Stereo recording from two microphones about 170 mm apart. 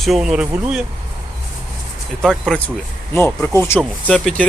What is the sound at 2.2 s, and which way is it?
Speech, centre (ahead or behind).